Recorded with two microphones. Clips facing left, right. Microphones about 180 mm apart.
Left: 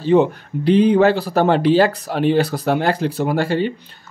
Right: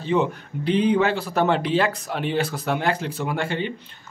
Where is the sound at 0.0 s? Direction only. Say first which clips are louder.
Left 7 dB; 35° left (ahead or behind).